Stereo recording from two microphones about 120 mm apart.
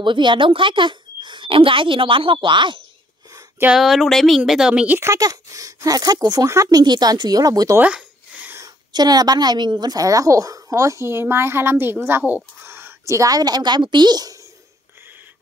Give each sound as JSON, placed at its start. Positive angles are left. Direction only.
{"t": 0.0, "sound": "a woman's voice", "side_deg": -40}
{"t": 3.7, "sound": "a woman's voice", "side_deg": 0}
{"t": 7.8, "sound": "a sound", "side_deg": -15}
{"t": 8.5, "sound": "a woman's voice", "side_deg": -30}